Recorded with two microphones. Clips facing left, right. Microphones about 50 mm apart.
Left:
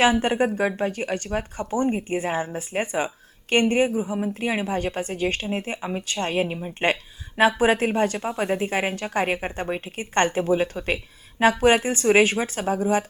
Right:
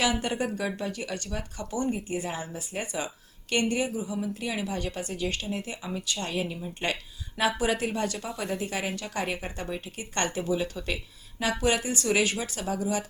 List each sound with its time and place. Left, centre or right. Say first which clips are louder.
0.0 s a woman's voice: left 8 dB; left